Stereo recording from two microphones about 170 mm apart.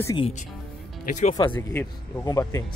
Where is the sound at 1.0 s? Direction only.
45° left (ahead or behind).